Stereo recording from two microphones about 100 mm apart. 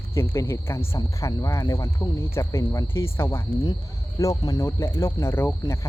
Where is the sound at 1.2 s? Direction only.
30° left (ahead or behind).